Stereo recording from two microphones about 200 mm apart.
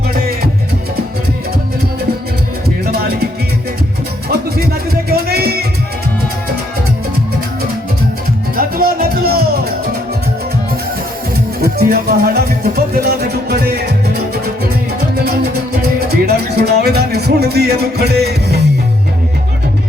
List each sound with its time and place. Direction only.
2.6 s music: 50° right (ahead or behind)
4.3 s music: 50° right (ahead or behind)
8.5 s music: 45° right (ahead or behind)
11.6 s music: 50° right (ahead or behind)
16.2 s music: 50° right (ahead or behind)